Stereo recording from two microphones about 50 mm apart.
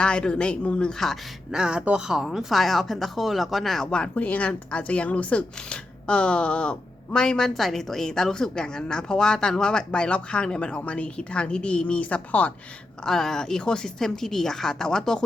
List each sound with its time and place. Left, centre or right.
0.0 s a woman's voice: centre
0.9 s speech: centre
1.5 s speech: centre
4.1 s a woman's voice: left
13.1 s speech: centre